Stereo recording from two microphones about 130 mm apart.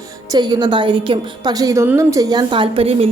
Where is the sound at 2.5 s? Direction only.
40° right (ahead or behind).